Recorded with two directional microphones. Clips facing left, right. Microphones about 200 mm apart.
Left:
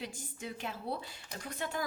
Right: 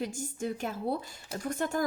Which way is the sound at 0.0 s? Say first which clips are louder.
Right 9 dB; 45° right (ahead or behind).